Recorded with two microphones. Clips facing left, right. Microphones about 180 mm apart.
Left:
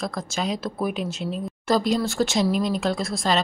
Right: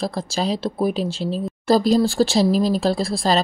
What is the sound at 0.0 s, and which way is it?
Speech, 30° right (ahead or behind).